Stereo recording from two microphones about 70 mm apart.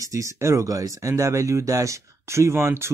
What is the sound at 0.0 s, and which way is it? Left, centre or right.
Speech, right.